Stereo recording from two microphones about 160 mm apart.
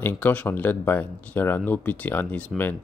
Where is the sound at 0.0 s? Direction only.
10° left (ahead or behind).